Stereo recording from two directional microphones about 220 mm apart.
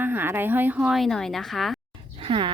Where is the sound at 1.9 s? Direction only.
25° right (ahead or behind).